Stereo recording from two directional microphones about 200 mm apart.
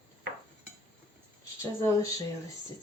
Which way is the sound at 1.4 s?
15° left (ahead or behind).